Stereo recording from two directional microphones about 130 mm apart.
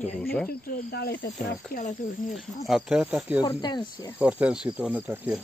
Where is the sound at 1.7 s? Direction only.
75° left (ahead or behind).